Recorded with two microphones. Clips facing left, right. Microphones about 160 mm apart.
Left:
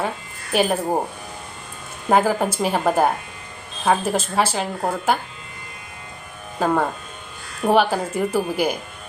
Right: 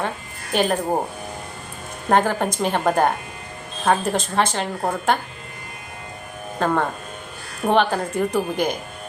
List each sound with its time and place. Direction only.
0.5 s a woman's voice: 5° left (ahead or behind)
2.0 s a woman's voice: 5° left (ahead or behind)
6.6 s a woman's voice: 5° left (ahead or behind)